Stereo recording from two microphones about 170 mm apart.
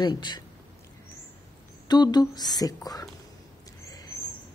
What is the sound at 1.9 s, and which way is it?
A woman's voice, 25° left (ahead or behind).